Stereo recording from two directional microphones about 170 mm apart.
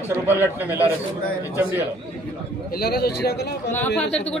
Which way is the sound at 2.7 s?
65° left (ahead or behind).